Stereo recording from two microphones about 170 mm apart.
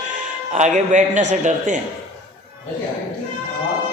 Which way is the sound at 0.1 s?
45° right (ahead or behind).